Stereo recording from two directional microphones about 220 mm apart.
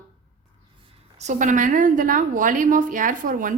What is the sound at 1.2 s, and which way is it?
A woman's voice, 35° right (ahead or behind).